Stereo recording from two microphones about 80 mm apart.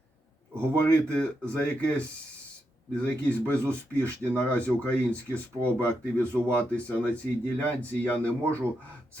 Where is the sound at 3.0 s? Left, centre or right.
Centre.